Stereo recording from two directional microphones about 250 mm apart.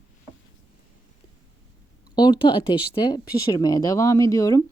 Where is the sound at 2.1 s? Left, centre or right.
Centre.